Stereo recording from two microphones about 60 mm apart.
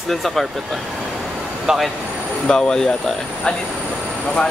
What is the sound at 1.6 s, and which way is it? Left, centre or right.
Speech, centre.